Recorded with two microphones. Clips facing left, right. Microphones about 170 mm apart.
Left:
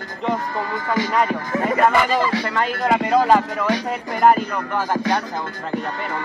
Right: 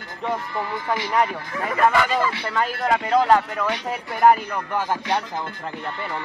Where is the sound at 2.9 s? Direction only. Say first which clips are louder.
Left 2 dB; 5° left (ahead or behind).